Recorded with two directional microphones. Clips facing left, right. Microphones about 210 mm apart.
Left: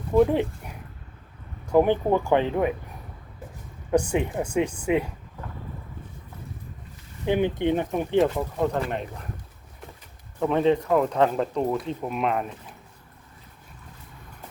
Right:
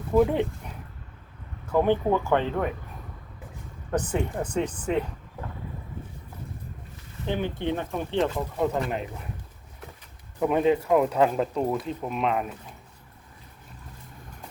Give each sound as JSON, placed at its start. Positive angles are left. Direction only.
{"t": 0.1, "sound": "speech", "side_deg": 0}
{"t": 1.6, "sound": "speech", "side_deg": 15}
{"t": 3.9, "sound": "speech", "side_deg": 10}
{"t": 7.3, "sound": "speech", "side_deg": 15}
{"t": 8.2, "sound": "speech", "side_deg": 0}
{"t": 10.4, "sound": "speech", "side_deg": -10}